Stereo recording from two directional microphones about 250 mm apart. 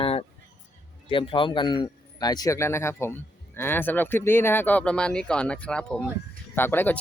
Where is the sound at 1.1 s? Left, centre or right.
Left.